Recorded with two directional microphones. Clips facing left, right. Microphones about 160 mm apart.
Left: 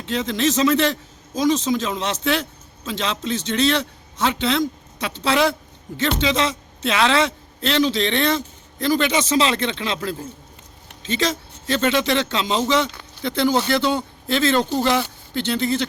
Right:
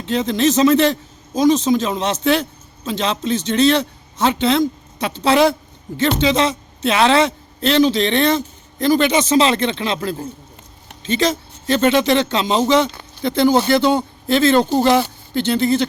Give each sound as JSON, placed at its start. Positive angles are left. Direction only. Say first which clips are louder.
{"t": 0.0, "sound": "a man's voice", "louder": "right 4 dB", "side_deg": -35}
{"t": 11.8, "sound": "speech", "louder": "right 5 dB", "side_deg": -35}
{"t": 13.2, "sound": "speech", "louder": "right 5 dB", "side_deg": -45}